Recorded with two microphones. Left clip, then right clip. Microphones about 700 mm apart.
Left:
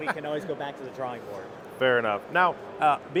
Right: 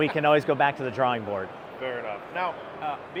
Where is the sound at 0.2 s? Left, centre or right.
Right.